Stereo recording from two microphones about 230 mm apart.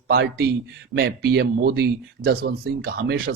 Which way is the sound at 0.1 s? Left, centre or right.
Right.